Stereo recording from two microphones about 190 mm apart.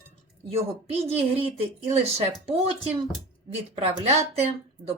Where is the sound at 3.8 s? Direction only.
35° right (ahead or behind).